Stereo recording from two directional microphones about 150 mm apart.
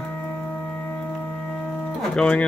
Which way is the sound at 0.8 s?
15° left (ahead or behind).